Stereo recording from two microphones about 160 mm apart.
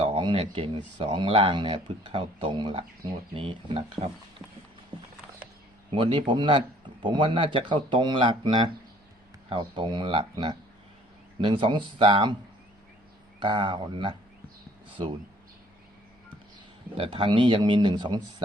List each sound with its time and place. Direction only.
0.0 s speech: 35° right (ahead or behind)
4.9 s a sound: 35° right (ahead or behind)
5.9 s speech: 35° right (ahead or behind)
13.4 s speech: 30° right (ahead or behind)
17.0 s speech: 35° right (ahead or behind)